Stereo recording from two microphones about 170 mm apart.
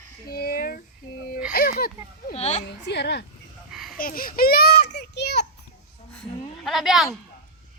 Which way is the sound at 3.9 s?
55° left (ahead or behind).